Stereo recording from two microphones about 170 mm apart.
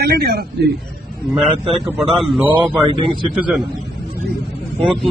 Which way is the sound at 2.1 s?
Centre (ahead or behind).